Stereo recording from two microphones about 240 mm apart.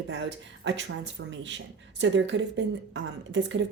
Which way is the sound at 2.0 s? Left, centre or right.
Right.